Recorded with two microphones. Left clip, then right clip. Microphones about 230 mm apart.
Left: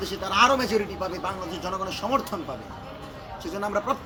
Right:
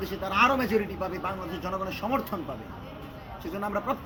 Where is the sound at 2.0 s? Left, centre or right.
Left.